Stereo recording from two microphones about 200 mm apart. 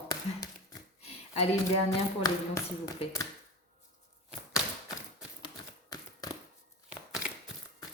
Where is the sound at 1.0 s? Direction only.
30° left (ahead or behind).